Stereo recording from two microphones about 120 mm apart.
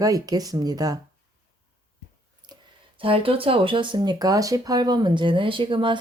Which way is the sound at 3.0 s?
50° right (ahead or behind).